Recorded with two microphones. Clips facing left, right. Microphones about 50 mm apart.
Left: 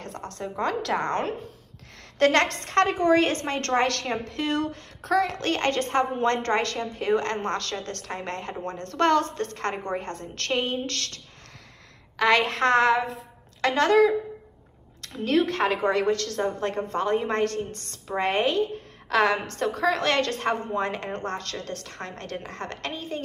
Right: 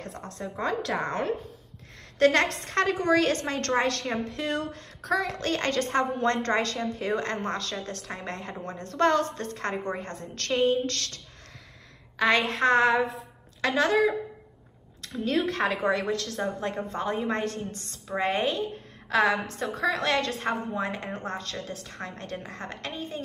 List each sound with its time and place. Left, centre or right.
0.0 s a sound: left
1.0 s a woman's voice: left
3.8 s a woman's voice: left
4.3 s a woman's voice: left
10.5 s a woman's voice: left
10.9 s a woman's voice: left
12.2 s a woman's voice: left
15.1 s a woman's voice: left